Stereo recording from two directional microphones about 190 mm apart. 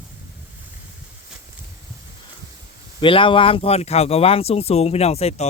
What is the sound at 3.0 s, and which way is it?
Speech, 25° left (ahead or behind).